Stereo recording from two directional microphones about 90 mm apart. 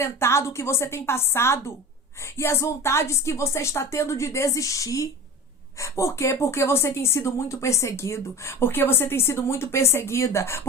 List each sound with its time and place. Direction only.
0.0 s a woman's voice: 30° left (ahead or behind)